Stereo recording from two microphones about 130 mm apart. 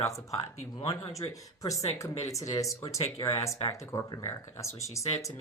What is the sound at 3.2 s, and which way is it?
Speech, 20° left (ahead or behind).